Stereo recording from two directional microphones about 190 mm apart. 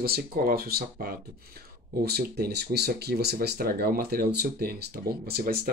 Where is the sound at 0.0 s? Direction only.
55° right (ahead or behind).